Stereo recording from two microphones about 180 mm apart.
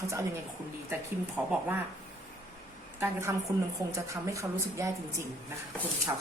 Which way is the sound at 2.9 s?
15° right (ahead or behind).